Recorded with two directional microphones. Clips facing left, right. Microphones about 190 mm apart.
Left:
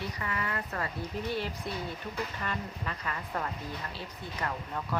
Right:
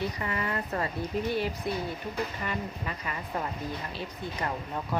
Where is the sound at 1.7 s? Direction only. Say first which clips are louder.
Right 4 dB; 10° right (ahead or behind).